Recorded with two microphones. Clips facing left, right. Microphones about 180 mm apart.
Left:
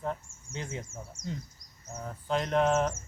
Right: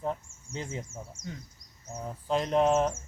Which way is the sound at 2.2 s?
Centre (ahead or behind).